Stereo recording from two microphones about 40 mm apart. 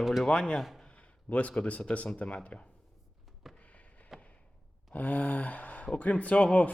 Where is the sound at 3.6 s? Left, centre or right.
Left.